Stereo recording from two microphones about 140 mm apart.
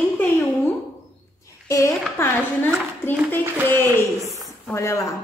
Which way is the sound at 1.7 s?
20° left (ahead or behind).